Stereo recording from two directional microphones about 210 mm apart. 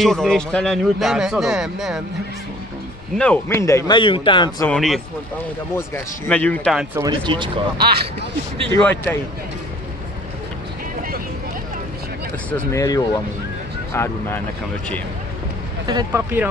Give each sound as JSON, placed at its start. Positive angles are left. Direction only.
{"t": 0.0, "sound": "a man's voice", "side_deg": 0}
{"t": 3.2, "sound": "speech", "side_deg": 10}
{"t": 4.6, "sound": "a man's voice", "side_deg": 0}
{"t": 7.0, "sound": "speech", "side_deg": -20}
{"t": 8.7, "sound": "speech", "side_deg": 5}
{"t": 12.4, "sound": "speech", "side_deg": 10}
{"t": 15.9, "sound": "speech", "side_deg": -15}